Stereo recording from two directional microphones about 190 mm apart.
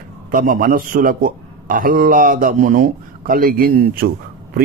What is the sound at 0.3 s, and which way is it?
A man's voice, 45° right (ahead or behind).